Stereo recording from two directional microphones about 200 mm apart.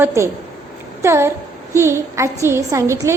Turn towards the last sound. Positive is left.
turn(degrees=-15)  # may be behind; listen again after turning